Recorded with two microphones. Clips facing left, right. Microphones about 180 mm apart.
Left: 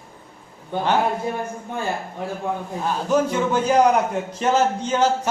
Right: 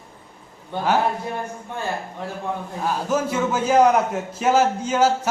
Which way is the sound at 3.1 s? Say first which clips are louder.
Left 4 dB; 5° right (ahead or behind).